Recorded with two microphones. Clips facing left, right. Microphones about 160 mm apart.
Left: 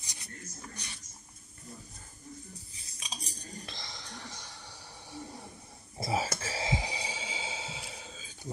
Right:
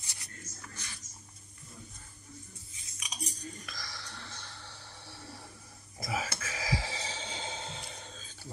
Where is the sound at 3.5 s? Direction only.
30° left (ahead or behind).